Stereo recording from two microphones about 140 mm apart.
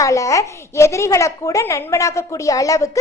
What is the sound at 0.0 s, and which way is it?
A woman's voice, 25° left (ahead or behind).